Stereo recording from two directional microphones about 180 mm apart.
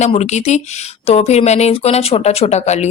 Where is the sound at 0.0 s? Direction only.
40° left (ahead or behind).